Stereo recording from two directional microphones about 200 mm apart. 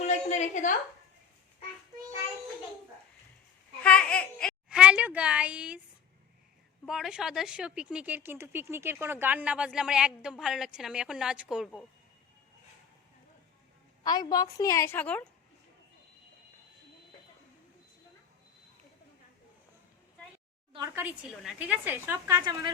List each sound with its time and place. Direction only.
0.1 s a sound: 35° left (ahead or behind)
3.8 s speech: 5° left (ahead or behind)
6.8 s speech: centre (ahead or behind)
14.0 s a woman's voice: 20° left (ahead or behind)
20.7 s a woman's voice: 15° right (ahead or behind)